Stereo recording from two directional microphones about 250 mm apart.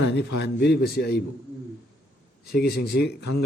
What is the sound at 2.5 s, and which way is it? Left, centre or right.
Speech, left.